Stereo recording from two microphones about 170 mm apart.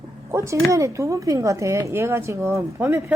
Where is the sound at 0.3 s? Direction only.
15° right (ahead or behind).